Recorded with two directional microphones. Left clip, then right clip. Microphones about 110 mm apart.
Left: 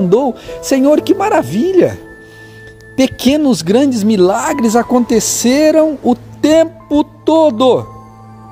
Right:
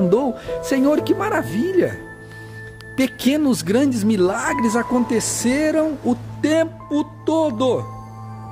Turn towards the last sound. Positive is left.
turn(degrees=60)  # may be behind; listen again after turning